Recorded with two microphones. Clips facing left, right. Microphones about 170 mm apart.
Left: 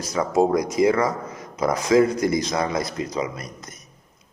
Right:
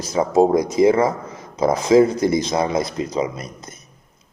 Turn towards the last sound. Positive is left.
turn(degrees=-25)  # may be behind; listen again after turning